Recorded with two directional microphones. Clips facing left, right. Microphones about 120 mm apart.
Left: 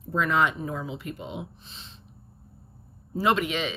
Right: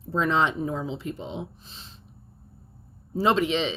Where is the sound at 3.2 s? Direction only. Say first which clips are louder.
Right 2 dB; 30° right (ahead or behind).